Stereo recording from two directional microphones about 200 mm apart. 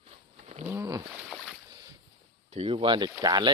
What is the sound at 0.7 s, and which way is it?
Roaring cats, 15° right (ahead or behind).